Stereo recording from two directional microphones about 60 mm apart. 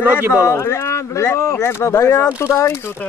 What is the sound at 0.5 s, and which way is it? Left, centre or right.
Speech, left.